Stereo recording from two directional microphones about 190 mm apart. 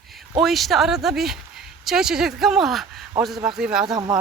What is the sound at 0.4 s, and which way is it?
Speech, centre (ahead or behind).